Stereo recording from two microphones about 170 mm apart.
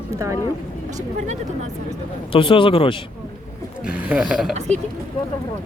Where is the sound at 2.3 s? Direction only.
30° left (ahead or behind).